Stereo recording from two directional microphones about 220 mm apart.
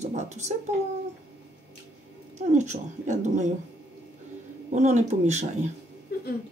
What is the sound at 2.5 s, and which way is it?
Speech, 35° right (ahead or behind).